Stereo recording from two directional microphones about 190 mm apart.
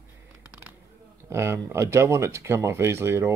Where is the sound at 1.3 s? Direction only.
15° right (ahead or behind).